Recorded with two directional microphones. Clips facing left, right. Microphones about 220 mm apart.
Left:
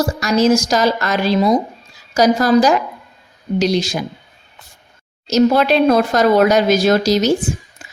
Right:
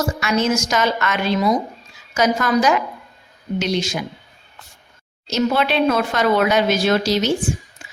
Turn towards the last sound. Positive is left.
turn(degrees=40)  # may be behind; listen again after turning